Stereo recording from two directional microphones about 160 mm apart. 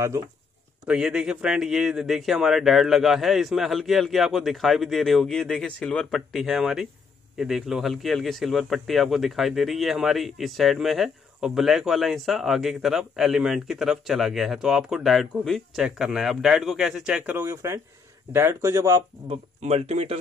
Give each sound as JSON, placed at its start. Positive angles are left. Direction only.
{"t": 0.8, "sound": "a man's voice", "side_deg": -5}
{"t": 19.2, "sound": "speech", "side_deg": -45}